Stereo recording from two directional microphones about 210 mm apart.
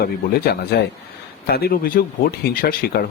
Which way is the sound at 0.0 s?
45° left (ahead or behind).